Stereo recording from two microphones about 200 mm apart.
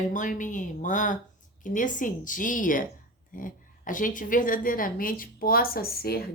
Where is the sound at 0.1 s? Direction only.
40° left (ahead or behind).